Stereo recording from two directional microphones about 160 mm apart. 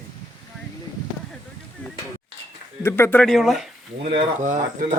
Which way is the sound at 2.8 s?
15° left (ahead or behind).